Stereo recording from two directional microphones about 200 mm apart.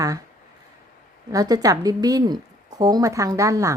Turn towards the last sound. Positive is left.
turn(degrees=-15)  # may be behind; listen again after turning